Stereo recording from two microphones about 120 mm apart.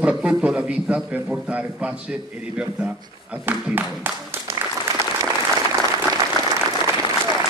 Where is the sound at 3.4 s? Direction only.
15° right (ahead or behind).